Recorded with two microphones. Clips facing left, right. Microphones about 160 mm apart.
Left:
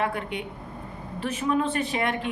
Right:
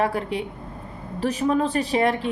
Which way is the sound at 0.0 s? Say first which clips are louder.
Right 5 dB; 35° right (ahead or behind).